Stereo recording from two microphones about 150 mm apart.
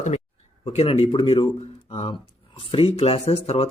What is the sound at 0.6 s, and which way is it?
Speech, 40° left (ahead or behind).